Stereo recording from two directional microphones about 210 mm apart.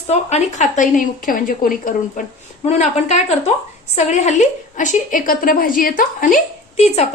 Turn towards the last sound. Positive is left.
turn(degrees=30)  # may be behind; listen again after turning